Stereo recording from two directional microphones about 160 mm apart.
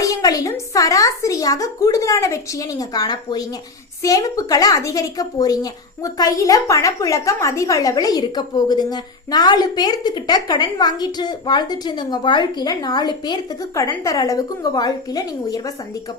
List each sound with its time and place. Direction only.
0.0 s speech: 20° left (ahead or behind)